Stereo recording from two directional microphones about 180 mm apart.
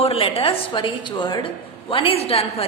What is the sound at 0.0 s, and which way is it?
A woman's voice, 30° left (ahead or behind).